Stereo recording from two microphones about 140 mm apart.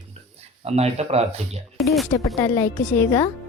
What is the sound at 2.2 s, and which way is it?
Speech, 25° left (ahead or behind).